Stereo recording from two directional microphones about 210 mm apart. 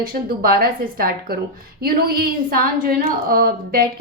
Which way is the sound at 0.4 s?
45° right (ahead or behind).